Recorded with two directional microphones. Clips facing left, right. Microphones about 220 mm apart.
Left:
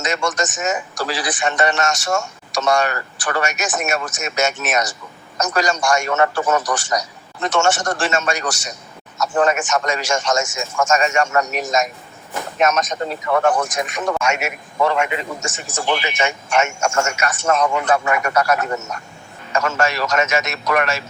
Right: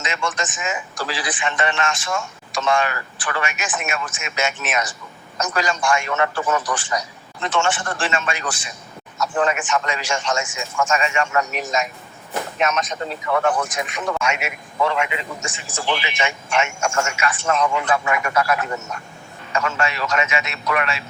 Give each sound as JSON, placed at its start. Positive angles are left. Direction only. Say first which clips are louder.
{"t": 0.0, "sound": "a man's voice", "louder": "left 4 dB", "side_deg": 40}